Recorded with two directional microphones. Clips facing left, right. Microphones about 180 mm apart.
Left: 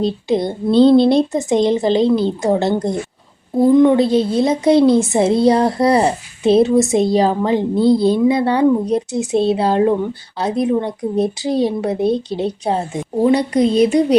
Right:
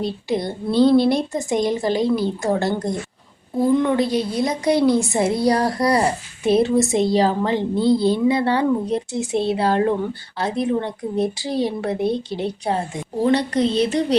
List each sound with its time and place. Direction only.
0.0 s a woman's voice: 20° left (ahead or behind)
13.2 s speech: 10° left (ahead or behind)